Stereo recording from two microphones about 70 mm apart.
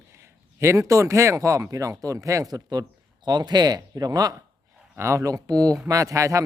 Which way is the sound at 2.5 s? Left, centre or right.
Right.